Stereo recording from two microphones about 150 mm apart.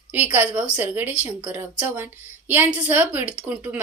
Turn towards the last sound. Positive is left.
turn(degrees=-10)  # may be behind; listen again after turning